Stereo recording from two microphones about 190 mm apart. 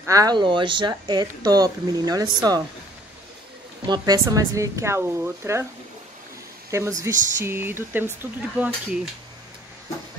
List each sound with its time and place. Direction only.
0.0 s speech: 20° right (ahead or behind)
3.8 s speech: 20° right (ahead or behind)
6.7 s speech: 15° right (ahead or behind)